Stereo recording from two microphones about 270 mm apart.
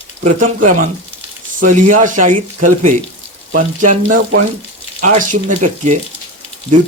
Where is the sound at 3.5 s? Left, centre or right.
Right.